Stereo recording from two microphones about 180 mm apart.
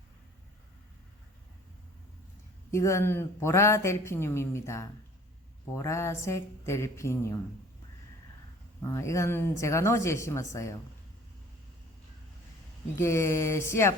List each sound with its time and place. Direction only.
2.7 s speech: 15° left (ahead or behind)
8.8 s speech: 15° left (ahead or behind)
13.0 s speech: 15° left (ahead or behind)